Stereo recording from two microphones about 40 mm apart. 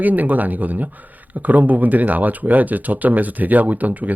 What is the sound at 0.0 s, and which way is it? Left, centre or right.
Speech, right.